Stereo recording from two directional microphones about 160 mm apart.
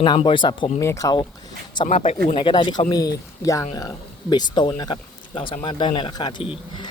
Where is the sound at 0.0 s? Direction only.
30° left (ahead or behind).